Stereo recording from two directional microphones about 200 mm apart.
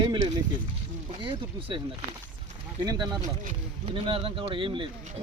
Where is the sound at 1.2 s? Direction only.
25° right (ahead or behind).